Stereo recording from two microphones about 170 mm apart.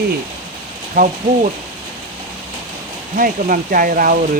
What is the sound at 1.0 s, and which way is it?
Speech, 55° right (ahead or behind).